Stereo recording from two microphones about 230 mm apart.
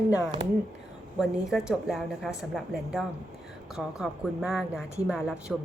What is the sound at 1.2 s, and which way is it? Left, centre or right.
A woman's voice, centre.